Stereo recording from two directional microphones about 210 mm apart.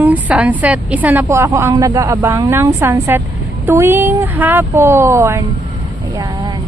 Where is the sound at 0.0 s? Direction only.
5° right (ahead or behind).